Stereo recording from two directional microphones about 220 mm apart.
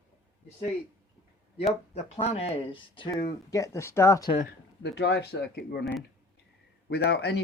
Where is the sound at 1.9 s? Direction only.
30° left (ahead or behind); by 4.2 s 15° left (ahead or behind).